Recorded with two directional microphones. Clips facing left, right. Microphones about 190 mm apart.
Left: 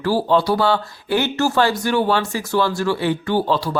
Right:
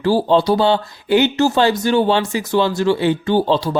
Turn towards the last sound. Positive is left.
turn(degrees=-25)  # may be behind; listen again after turning